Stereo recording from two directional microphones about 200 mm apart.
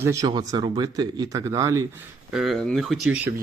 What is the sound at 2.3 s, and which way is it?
Speech, centre (ahead or behind).